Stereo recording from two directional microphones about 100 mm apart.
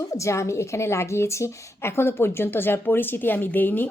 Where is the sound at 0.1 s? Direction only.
30° left (ahead or behind).